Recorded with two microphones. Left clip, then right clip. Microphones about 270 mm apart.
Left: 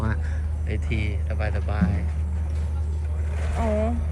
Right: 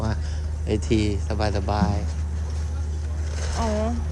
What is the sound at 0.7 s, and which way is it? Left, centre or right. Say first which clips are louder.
Speech: right 9 dB; centre.